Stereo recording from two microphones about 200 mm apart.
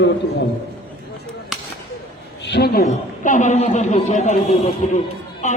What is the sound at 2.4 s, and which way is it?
Speech, 55° left (ahead or behind).